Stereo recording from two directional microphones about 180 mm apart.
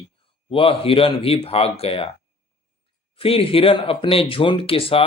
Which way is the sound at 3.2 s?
30° left (ahead or behind).